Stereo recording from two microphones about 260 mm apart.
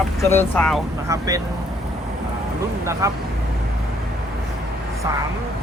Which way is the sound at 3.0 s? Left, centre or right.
Centre.